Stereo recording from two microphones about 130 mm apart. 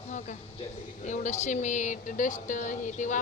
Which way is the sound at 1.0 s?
65° left (ahead or behind).